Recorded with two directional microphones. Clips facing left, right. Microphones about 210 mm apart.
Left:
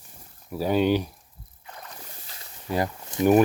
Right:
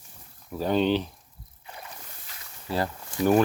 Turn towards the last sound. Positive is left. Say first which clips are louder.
# left 3 dB
turn(degrees=20)  # may be behind; listen again after turning